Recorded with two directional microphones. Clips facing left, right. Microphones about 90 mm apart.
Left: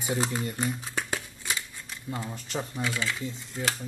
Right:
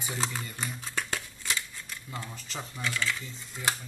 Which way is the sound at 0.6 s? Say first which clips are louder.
Left 4 dB; 10° left (ahead or behind).